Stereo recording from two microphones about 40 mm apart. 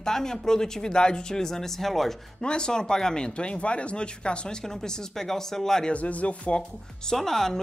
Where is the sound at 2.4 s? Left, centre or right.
Left.